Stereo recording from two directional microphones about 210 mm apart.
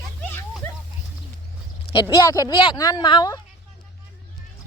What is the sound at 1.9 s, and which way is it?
Speech, 20° left (ahead or behind).